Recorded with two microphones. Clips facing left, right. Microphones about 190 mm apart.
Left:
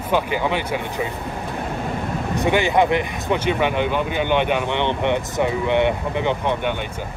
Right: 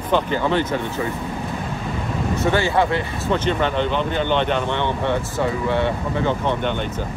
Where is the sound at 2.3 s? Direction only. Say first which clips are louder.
Left 1 dB; 15° left (ahead or behind).